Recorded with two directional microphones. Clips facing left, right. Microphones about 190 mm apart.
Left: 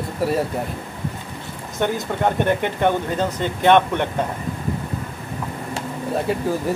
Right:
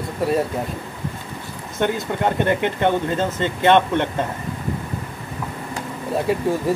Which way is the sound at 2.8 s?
15° left (ahead or behind).